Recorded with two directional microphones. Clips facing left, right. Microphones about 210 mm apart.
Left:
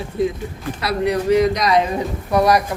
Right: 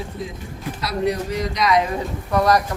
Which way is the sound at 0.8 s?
65° left (ahead or behind).